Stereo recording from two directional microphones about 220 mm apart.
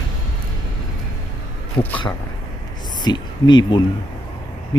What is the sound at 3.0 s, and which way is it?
Speech, 20° left (ahead or behind).